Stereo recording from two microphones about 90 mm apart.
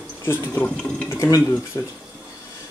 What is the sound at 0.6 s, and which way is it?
Speech, 5° left (ahead or behind).